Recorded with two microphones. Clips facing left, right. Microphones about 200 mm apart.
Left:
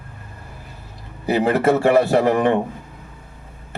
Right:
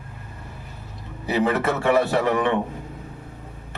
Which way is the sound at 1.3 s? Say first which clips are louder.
Left 5 dB; 50° left (ahead or behind).